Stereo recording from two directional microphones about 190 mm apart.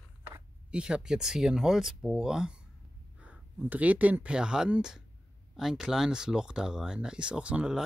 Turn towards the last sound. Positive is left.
turn(degrees=-5)  # may be behind; listen again after turning